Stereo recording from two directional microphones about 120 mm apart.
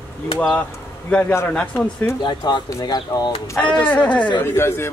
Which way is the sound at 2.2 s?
40° left (ahead or behind).